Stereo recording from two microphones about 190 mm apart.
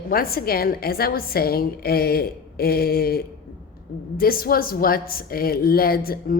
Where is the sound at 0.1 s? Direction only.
50° left (ahead or behind).